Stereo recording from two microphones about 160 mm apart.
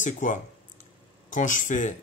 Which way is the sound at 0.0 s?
55° left (ahead or behind).